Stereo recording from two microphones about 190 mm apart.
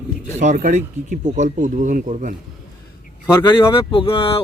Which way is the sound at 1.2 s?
30° right (ahead or behind).